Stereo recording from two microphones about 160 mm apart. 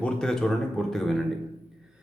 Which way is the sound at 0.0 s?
5° left (ahead or behind).